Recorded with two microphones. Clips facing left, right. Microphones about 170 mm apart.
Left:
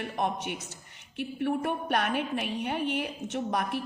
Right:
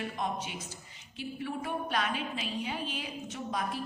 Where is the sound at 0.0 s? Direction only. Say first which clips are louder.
Left 4 dB; 65° left (ahead or behind).